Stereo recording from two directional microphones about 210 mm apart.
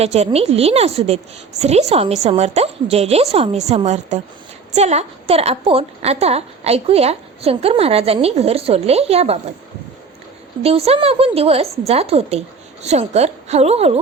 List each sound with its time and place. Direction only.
0.0 s a woman's voice: 30° right (ahead or behind)
10.6 s a woman's voice: 30° right (ahead or behind)